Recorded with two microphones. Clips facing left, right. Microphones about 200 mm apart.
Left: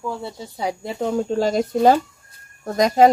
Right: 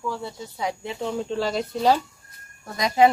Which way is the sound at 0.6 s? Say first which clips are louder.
Left 4 dB; 40° left (ahead or behind).